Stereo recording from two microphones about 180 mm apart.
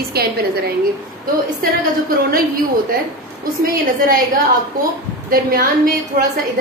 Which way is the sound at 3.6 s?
55° right (ahead or behind).